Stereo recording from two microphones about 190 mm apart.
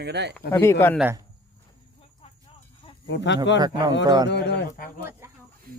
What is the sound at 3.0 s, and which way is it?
Speech, 70° left (ahead or behind).